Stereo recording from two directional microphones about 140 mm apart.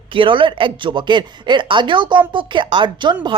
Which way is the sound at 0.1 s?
35° right (ahead or behind).